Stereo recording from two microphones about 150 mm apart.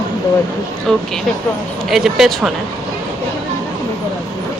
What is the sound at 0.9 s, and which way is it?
Speech, centre (ahead or behind).